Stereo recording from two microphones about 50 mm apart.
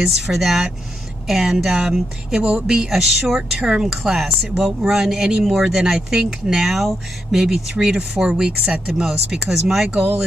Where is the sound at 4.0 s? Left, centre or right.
Centre.